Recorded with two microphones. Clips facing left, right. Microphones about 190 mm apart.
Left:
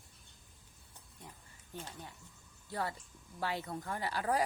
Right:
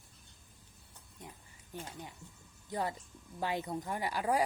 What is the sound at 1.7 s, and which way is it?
Speech, 15° right (ahead or behind).